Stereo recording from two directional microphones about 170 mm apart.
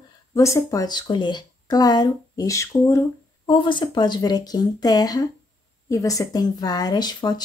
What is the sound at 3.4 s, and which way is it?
Speech, 30° left (ahead or behind).